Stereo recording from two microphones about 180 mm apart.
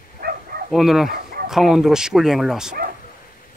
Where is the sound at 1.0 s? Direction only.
55° right (ahead or behind).